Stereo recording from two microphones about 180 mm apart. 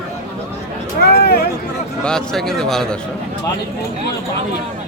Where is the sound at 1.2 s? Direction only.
60° left (ahead or behind).